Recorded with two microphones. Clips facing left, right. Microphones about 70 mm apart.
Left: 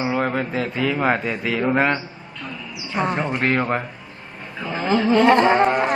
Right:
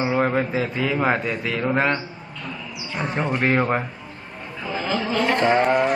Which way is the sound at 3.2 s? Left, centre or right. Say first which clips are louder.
Right 5 dB; centre.